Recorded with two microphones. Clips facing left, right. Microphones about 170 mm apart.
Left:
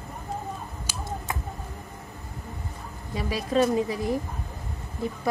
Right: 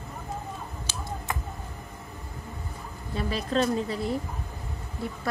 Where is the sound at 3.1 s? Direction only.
10° left (ahead or behind).